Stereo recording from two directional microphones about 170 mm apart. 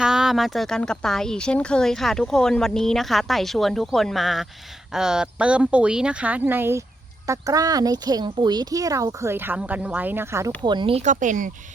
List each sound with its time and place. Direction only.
0.0 s speech: 5° right (ahead or behind)
10.6 s speech: 25° right (ahead or behind)
11.0 s speech: 50° right (ahead or behind)